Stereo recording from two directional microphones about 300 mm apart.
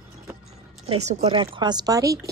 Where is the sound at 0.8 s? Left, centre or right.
Centre.